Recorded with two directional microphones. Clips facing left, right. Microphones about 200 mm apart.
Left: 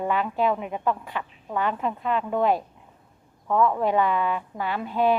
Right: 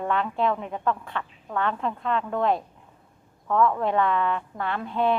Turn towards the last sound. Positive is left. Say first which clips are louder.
# left 2 dB
turn(degrees=5)  # may be behind; listen again after turning